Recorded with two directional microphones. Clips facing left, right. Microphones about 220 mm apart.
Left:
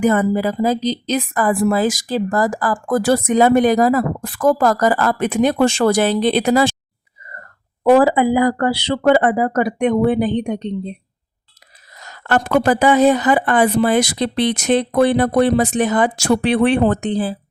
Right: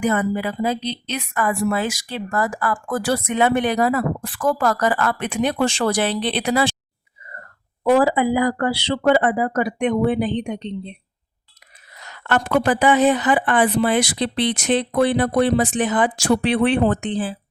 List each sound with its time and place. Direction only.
0.1 s speech: 40° left (ahead or behind)
7.9 s speech: 50° left (ahead or behind)
11.9 s speech: 40° left (ahead or behind)